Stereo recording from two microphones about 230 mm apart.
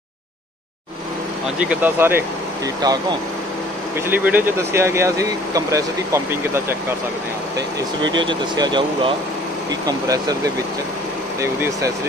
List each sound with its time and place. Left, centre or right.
1.6 s speech: centre
4.1 s speech: centre